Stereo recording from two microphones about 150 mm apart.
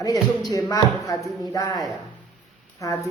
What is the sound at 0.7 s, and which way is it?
A man's voice, 25° left (ahead or behind).